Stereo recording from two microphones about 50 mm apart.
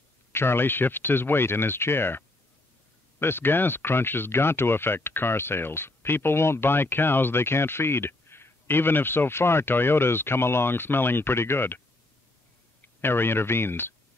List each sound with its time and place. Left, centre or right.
0.3 s speech: left
12.8 s speech: left